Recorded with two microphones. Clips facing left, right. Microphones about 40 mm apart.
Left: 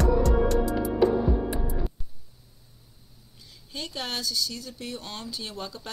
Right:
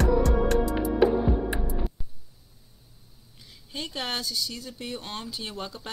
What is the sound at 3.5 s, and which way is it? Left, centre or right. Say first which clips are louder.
A woman's voice: right 1 dB; right.